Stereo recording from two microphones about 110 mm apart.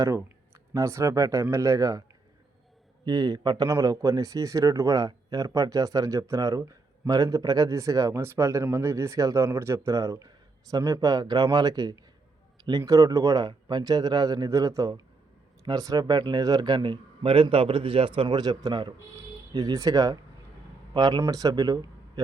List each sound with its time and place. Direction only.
0.7 s speech: 25° right (ahead or behind)
3.7 s speech: 30° right (ahead or behind)